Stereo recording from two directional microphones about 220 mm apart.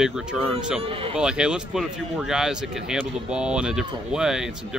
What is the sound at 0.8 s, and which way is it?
Speech, 25° right (ahead or behind).